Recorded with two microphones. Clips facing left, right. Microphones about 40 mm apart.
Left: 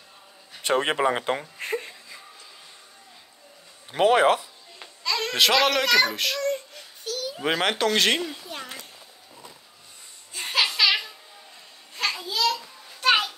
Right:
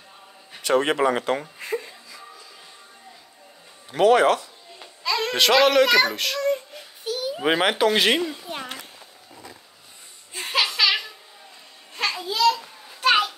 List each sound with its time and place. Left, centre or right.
0.6 s speech: left
0.9 s speech: centre
1.6 s music: left
3.9 s speech: centre
5.0 s a child's voice: centre
6.4 s baby cry: centre
7.1 s a child's voice: centre
10.4 s a sound: centre
12.2 s a sound: centre
13.0 s children playing: centre